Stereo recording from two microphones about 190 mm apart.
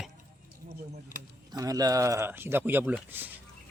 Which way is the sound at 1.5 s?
20° right (ahead or behind).